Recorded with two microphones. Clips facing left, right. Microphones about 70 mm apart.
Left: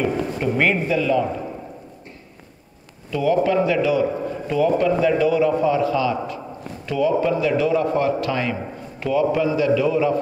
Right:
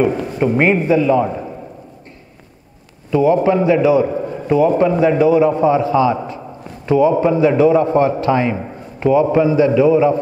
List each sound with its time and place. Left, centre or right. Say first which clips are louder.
0.0 s a man's voice: right 6 dB; right
3.1 s a man's voice: right 6 dB; right